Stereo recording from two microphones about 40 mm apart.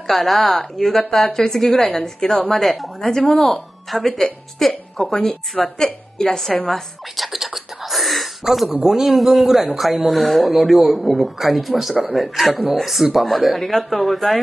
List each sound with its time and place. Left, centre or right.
0.1 s a woman's voice: centre
2.5 s speech: centre
3.0 s a woman's voice: centre
7.3 s a sound: centre
8.8 s speech: centre